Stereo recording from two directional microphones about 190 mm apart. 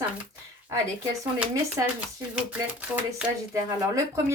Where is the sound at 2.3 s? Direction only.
5° right (ahead or behind).